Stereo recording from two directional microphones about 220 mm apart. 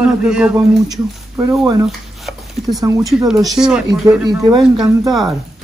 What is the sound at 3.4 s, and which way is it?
Speech, centre (ahead or behind).